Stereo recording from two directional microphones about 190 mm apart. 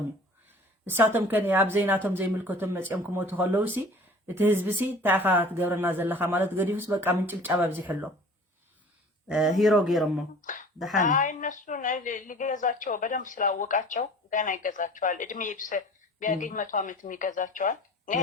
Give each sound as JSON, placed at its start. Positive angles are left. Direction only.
{"t": 0.9, "sound": "a woman's voice", "side_deg": -10}
{"t": 9.2, "sound": "a man's voice", "side_deg": 0}
{"t": 10.4, "sound": "a sound", "side_deg": 45}
{"t": 10.9, "sound": "a woman's voice", "side_deg": 40}